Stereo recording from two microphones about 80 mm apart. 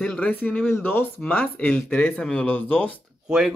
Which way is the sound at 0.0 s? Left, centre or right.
Centre.